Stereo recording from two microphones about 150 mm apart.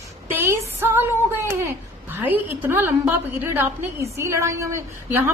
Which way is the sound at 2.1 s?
15° right (ahead or behind).